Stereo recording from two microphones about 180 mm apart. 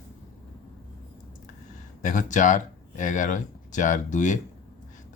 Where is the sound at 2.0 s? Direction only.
45° left (ahead or behind).